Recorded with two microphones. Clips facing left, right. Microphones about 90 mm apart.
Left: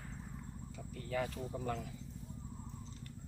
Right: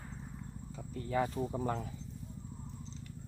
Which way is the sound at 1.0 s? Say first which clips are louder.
Right 6 dB; 25° right (ahead or behind).